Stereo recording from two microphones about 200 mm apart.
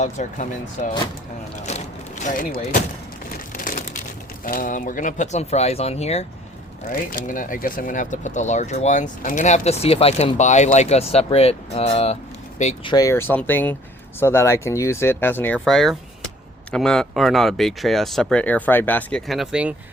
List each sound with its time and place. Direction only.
0.0 s speech: 35° left (ahead or behind)
1.6 s a sound: 35° left (ahead or behind)
3.5 s crumpling: 40° left (ahead or behind)
4.4 s speech: 45° left (ahead or behind)
6.9 s speech: 45° left (ahead or behind)
12.9 s speech: 15° left (ahead or behind); by 19.7 s 5° right (ahead or behind)